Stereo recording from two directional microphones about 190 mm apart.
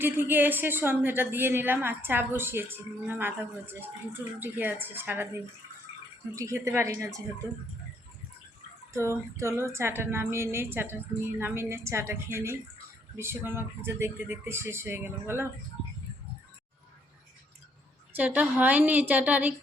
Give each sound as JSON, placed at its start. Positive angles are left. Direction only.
{"t": 0.0, "sound": "a woman's voice", "side_deg": -10}
{"t": 8.9, "sound": "a woman's voice", "side_deg": -15}
{"t": 18.2, "sound": "a woman's voice", "side_deg": -10}